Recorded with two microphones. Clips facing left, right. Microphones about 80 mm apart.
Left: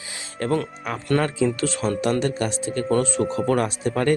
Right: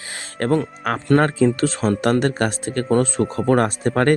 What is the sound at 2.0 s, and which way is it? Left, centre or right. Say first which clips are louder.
Speech: right 4 dB; right.